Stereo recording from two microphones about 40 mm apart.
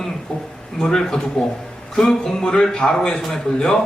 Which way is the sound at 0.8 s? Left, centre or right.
Centre.